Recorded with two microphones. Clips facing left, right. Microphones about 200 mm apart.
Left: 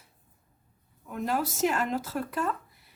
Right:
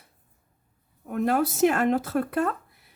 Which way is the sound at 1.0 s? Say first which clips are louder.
Right 6 dB; 55° right (ahead or behind).